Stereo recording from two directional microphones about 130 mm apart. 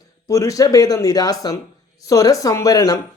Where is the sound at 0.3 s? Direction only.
25° left (ahead or behind).